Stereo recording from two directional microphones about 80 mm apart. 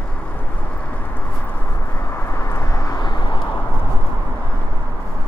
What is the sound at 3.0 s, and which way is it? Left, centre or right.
Vehicle, left.